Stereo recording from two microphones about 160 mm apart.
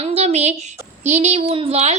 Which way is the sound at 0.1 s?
45° right (ahead or behind).